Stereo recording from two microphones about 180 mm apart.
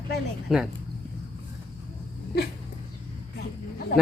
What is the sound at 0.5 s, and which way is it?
Speech, centre (ahead or behind).